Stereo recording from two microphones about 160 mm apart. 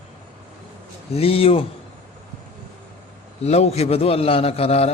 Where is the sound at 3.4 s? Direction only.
40° left (ahead or behind).